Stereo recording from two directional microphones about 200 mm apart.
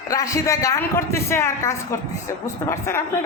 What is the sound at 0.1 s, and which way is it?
A woman's voice, 15° left (ahead or behind).